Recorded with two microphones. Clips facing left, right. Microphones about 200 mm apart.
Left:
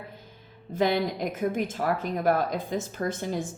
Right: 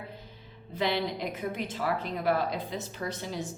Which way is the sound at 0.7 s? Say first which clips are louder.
Left 5 dB; 45° left (ahead or behind).